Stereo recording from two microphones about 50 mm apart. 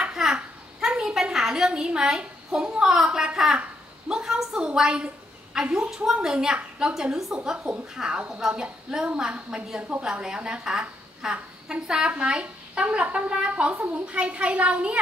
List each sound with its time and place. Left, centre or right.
0.0 s a sound: centre
4.1 s a woman's voice: centre
9.0 s a child's voice: right